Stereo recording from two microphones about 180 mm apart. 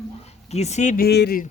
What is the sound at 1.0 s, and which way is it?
Speech, 65° left (ahead or behind).